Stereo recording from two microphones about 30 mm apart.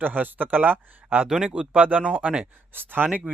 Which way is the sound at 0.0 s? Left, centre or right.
Right.